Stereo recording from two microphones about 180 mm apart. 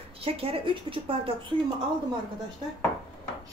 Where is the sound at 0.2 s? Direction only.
30° right (ahead or behind).